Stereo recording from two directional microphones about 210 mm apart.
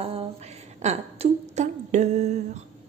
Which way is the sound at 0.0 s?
25° right (ahead or behind).